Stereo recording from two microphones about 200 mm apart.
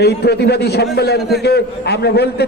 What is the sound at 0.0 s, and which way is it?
A man's voice, 55° left (ahead or behind).